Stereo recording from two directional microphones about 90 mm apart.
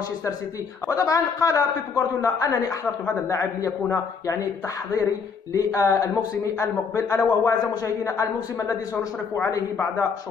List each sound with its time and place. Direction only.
0.8 s a man's voice: 40° left (ahead or behind)
5.5 s a man's voice: 40° left (ahead or behind)